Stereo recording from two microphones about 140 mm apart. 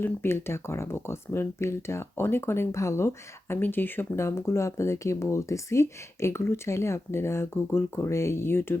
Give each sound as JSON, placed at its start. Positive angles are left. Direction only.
{"t": 0.0, "sound": "speech", "side_deg": 15}